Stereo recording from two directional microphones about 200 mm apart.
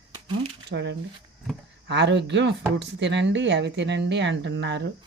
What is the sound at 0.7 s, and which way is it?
Speech, 60° right (ahead or behind).